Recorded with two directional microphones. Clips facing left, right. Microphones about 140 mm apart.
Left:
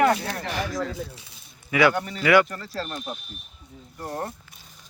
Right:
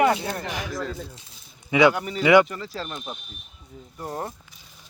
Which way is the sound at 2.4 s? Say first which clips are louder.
Even; 5° right (ahead or behind).